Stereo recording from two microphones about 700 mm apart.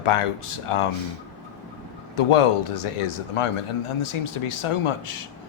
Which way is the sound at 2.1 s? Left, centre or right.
Left.